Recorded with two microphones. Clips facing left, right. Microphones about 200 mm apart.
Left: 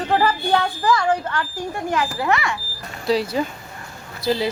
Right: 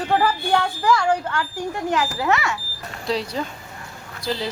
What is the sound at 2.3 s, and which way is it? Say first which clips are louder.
Speech: even; 15° left (ahead or behind).